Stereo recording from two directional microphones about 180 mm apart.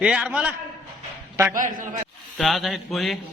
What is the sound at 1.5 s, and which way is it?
Speech, 50° right (ahead or behind).